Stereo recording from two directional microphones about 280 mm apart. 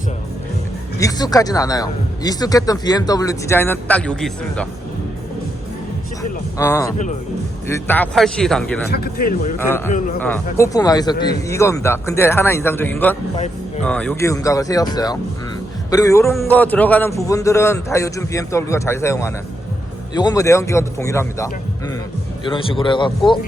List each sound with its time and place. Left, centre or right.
0.9 s a man's voice: centre
6.6 s a man's voice: centre
8.9 s speech: left
9.6 s a man's voice: centre